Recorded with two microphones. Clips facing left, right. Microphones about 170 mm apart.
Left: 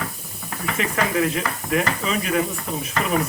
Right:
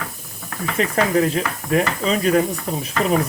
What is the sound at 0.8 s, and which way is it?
Speech, 40° right (ahead or behind).